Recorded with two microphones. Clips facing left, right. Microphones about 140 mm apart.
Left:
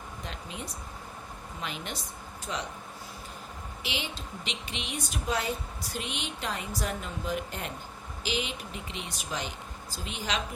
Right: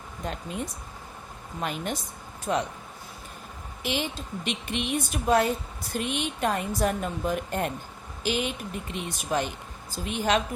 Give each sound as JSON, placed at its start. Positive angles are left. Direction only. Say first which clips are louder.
{"t": 0.3, "sound": "speech", "louder": "right 9 dB", "side_deg": -50}
{"t": 3.8, "sound": "speech", "louder": "right 7 dB", "side_deg": -50}